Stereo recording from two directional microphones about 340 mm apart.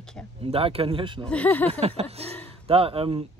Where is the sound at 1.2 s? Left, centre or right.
Centre.